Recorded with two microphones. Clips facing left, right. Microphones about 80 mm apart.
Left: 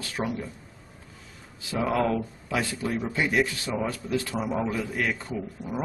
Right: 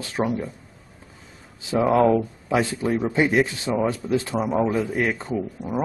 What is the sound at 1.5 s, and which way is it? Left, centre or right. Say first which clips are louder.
Speech: right 7 dB; right.